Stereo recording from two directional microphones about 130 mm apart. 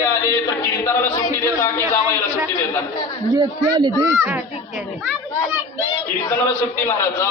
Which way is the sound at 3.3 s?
35° right (ahead or behind).